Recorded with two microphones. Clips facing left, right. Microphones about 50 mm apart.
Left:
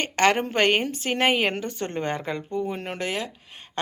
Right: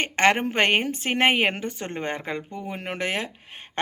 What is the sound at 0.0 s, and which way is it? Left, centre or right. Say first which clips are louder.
Speech: right 1 dB; right.